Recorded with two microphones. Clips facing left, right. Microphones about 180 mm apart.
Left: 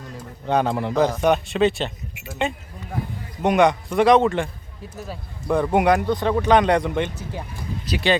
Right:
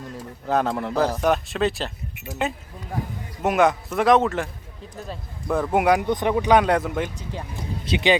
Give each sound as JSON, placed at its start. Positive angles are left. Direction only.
{"t": 0.4, "sound": "a man's voice", "side_deg": 0}
{"t": 7.5, "sound": "speech", "side_deg": -20}